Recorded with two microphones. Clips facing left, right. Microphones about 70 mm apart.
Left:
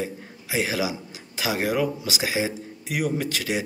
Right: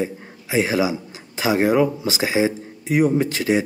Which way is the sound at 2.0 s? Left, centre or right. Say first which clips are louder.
Right 6 dB; right.